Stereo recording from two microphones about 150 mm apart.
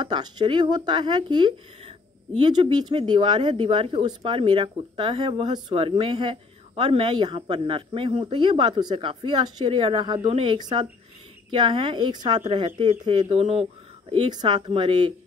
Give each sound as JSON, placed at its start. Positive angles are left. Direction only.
{"t": 0.0, "sound": "speech", "side_deg": -30}
{"t": 13.2, "sound": "speech", "side_deg": -45}
{"t": 14.3, "sound": "speech", "side_deg": -30}